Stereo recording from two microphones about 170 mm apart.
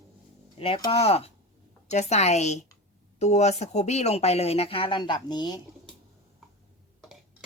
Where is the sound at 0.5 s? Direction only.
35° left (ahead or behind).